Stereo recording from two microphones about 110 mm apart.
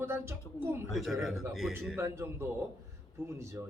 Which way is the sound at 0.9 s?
Centre (ahead or behind).